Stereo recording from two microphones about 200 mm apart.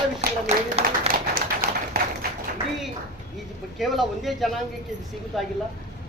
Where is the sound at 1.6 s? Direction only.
45° right (ahead or behind).